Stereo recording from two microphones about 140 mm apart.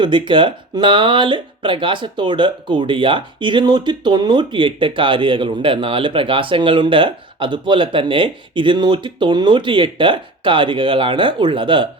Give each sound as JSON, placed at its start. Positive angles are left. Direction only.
{"t": 0.0, "sound": "speech", "side_deg": -35}